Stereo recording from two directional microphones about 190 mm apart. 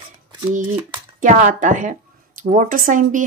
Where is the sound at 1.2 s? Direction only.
45° right (ahead or behind).